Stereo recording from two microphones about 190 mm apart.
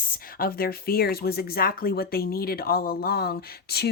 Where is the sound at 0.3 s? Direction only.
50° left (ahead or behind).